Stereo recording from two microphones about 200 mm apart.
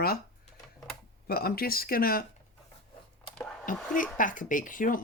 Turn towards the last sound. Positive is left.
turn(degrees=40)  # may be behind; listen again after turning